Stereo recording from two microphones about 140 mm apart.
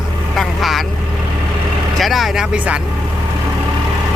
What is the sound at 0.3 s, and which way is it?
Vehicle, centre (ahead or behind).